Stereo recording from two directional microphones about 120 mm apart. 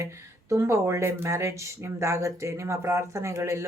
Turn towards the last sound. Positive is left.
turn(degrees=-25)  # may be behind; listen again after turning